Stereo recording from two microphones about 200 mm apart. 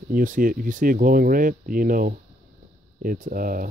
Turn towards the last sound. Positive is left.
turn(degrees=-45)  # may be behind; listen again after turning